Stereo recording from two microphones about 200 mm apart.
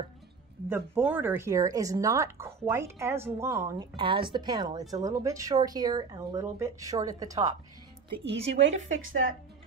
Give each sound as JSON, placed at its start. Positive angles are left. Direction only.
{"t": 0.7, "sound": "speech", "side_deg": -10}
{"t": 8.5, "sound": "a woman's voice", "side_deg": -35}
{"t": 8.8, "sound": "a woman's voice", "side_deg": -75}